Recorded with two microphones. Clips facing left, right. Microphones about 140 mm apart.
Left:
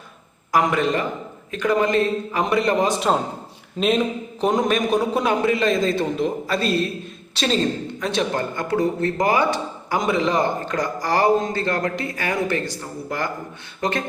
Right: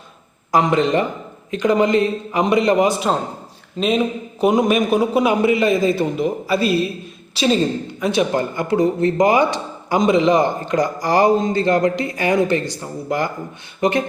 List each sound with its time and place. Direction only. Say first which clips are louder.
0.5 s a man's voice: right 4 dB; 25° right (ahead or behind)